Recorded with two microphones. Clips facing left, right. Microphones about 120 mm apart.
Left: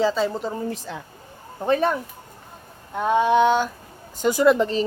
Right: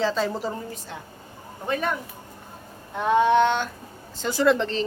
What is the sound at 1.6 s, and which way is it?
Speech, 30° left (ahead or behind).